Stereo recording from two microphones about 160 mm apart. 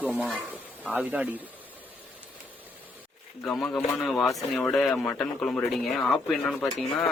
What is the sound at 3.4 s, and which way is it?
Speech, 5° left (ahead or behind).